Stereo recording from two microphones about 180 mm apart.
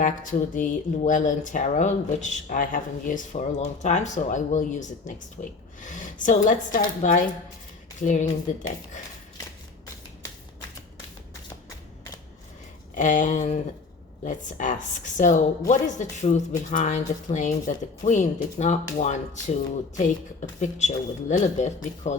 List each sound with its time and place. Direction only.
0.0 s speech: 45° left (ahead or behind)
12.9 s speech: 45° left (ahead or behind)